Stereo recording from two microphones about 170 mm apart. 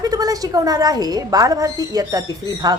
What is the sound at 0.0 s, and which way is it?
A woman's voice, 20° right (ahead or behind).